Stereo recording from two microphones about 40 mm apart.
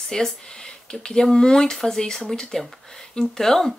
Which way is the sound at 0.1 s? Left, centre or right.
Centre.